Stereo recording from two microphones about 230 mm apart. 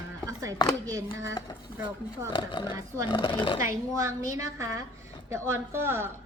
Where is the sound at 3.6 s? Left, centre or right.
Centre.